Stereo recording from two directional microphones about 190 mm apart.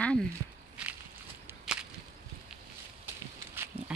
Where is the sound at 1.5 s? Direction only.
5° right (ahead or behind).